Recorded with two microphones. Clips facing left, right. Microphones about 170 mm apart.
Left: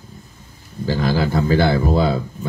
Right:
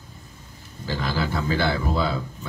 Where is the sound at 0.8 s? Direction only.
45° left (ahead or behind).